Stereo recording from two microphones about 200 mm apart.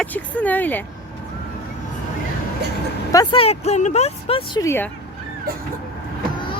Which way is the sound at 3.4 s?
30° left (ahead or behind).